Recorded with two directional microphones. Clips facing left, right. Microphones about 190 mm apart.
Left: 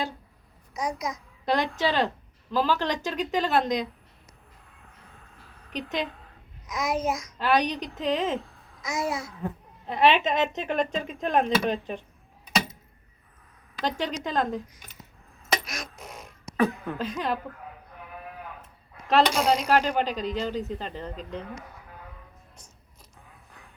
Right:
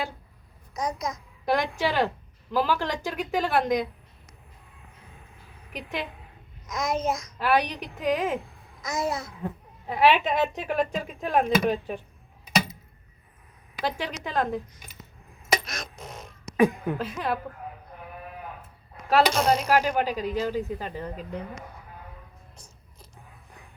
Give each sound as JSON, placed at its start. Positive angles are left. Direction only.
{"t": 0.8, "sound": "a child's voice", "side_deg": 10}
{"t": 1.5, "sound": "speech", "side_deg": -15}
{"t": 5.7, "sound": "speech", "side_deg": -10}
{"t": 6.7, "sound": "a child's voice", "side_deg": 5}
{"t": 7.3, "sound": "speech", "side_deg": -10}
{"t": 8.9, "sound": "a child's voice", "side_deg": 0}
{"t": 13.7, "sound": "speech", "side_deg": -10}
{"t": 15.6, "sound": "a sound", "side_deg": 10}
{"t": 16.6, "sound": "speech", "side_deg": -15}
{"t": 19.0, "sound": "speech", "side_deg": -5}